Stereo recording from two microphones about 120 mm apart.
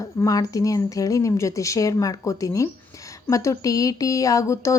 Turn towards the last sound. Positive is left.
turn(degrees=25)  # may be behind; listen again after turning